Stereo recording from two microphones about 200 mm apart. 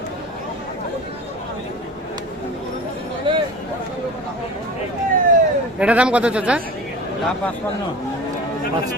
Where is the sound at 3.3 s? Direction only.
25° right (ahead or behind).